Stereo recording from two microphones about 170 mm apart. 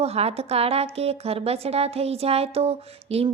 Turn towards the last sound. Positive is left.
turn(degrees=-35)  # may be behind; listen again after turning